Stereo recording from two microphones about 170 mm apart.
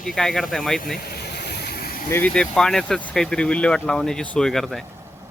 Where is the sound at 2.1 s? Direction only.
10° left (ahead or behind).